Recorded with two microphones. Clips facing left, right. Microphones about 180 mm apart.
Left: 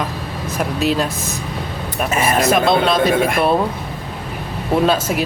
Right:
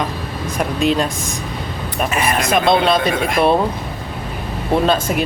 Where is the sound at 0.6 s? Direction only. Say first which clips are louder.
Right 1 dB; 5° left (ahead or behind).